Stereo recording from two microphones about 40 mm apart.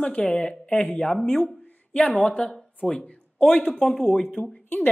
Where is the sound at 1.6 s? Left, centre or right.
Left.